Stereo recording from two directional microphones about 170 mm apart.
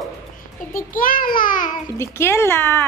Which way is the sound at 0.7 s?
55° left (ahead or behind).